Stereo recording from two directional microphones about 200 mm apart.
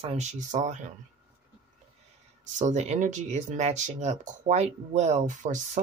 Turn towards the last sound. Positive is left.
turn(degrees=-40)  # may be behind; listen again after turning